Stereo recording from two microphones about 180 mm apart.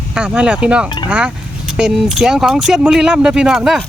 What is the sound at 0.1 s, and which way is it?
Speech, 5° right (ahead or behind).